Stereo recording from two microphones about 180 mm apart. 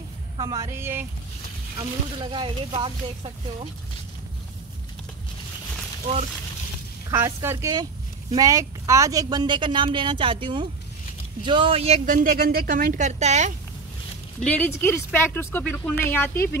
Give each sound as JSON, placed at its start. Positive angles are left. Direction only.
{"t": 0.4, "sound": "a woman's voice", "side_deg": -20}
{"t": 1.8, "sound": "speech", "side_deg": -25}
{"t": 7.1, "sound": "a woman's voice", "side_deg": -15}
{"t": 14.4, "sound": "speech", "side_deg": 10}